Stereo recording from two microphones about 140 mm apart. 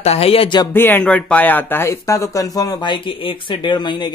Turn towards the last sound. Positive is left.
turn(degrees=30)  # may be behind; listen again after turning